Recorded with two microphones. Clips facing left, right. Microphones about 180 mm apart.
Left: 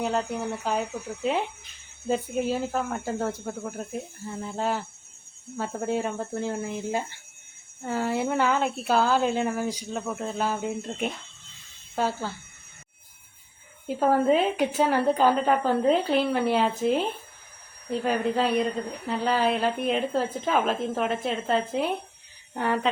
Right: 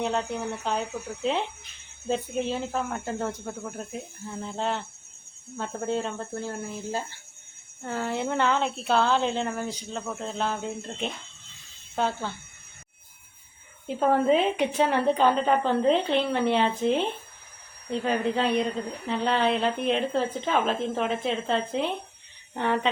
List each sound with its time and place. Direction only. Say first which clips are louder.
0.0 s a woman's voice: left 1 dB; 5° left (ahead or behind)
13.8 s a woman's voice: left 1 dB; 5° left (ahead or behind)